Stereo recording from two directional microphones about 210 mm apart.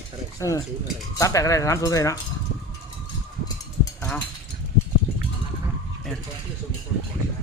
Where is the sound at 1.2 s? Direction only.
15° left (ahead or behind).